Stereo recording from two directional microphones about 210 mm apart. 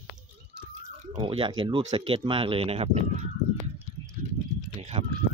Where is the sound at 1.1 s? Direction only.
25° right (ahead or behind).